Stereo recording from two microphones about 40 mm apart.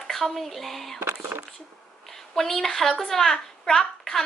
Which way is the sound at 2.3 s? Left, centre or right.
Centre.